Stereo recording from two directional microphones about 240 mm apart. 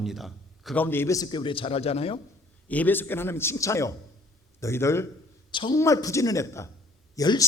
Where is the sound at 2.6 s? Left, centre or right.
Centre.